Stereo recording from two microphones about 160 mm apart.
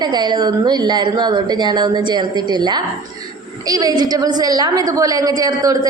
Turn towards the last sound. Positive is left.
turn(degrees=-25)  # may be behind; listen again after turning